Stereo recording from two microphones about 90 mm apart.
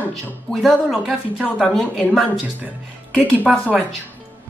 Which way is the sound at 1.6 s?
10° left (ahead or behind).